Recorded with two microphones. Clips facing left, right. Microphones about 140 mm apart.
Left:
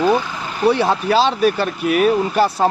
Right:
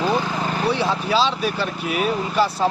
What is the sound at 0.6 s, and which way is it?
Speech, 55° left (ahead or behind).